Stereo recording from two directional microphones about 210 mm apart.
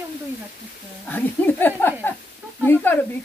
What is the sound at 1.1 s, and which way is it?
Speech, 10° left (ahead or behind).